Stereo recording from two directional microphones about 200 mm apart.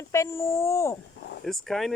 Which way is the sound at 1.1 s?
60° left (ahead or behind).